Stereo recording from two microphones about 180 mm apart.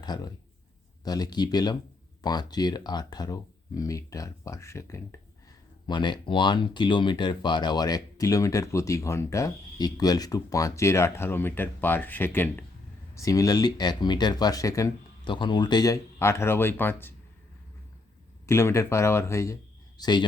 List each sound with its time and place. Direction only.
0.0 s speech: 25° left (ahead or behind)
18.4 s speech: 15° left (ahead or behind)